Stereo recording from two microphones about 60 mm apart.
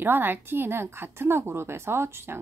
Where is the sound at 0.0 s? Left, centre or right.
Right.